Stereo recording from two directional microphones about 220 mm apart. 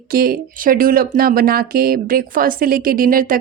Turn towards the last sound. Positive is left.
turn(degrees=-40)  # may be behind; listen again after turning